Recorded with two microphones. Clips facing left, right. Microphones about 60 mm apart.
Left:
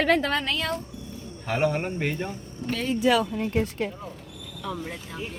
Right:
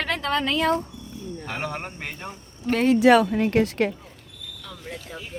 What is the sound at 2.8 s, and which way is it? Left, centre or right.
Speech, right.